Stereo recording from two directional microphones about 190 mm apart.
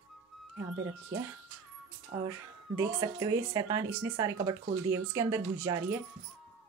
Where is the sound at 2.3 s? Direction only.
15° right (ahead or behind).